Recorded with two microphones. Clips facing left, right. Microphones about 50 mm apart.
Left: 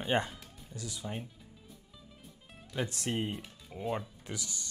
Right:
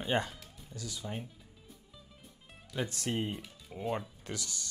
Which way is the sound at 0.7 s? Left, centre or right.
Left.